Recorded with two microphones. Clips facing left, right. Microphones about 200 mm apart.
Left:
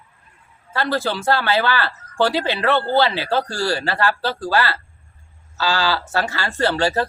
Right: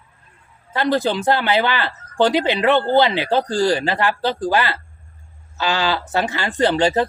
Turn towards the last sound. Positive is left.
turn(degrees=-20)  # may be behind; listen again after turning